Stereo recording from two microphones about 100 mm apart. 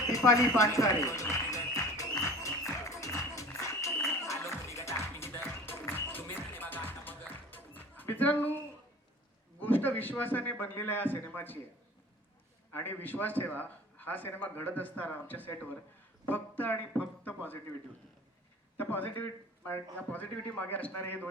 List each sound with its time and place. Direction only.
0.1 s music: 30° left (ahead or behind)
9.6 s a man's voice: 20° left (ahead or behind)
12.7 s a man's voice: 20° left (ahead or behind)
18.8 s a man's voice: 20° left (ahead or behind)